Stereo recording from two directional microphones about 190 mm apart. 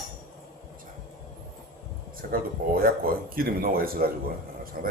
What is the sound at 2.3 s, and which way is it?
Speech, 50° right (ahead or behind).